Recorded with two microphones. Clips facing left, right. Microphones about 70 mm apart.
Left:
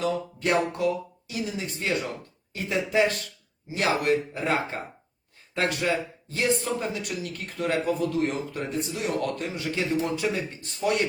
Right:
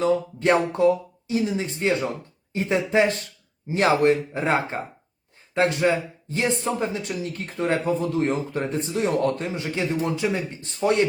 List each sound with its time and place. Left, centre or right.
0.0 s speech: right